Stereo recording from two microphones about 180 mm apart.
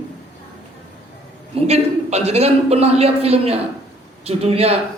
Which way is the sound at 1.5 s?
35° right (ahead or behind).